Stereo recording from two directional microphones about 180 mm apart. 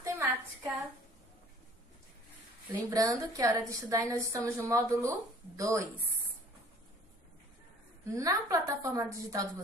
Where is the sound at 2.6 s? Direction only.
20° right (ahead or behind).